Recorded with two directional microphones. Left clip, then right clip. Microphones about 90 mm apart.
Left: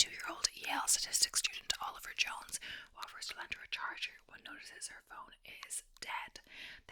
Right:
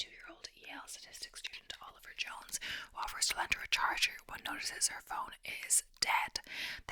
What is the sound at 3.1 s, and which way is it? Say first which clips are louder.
Speech: right 10 dB; 40° right (ahead or behind).